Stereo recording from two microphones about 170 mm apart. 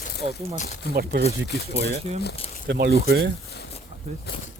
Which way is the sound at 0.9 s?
70° right (ahead or behind).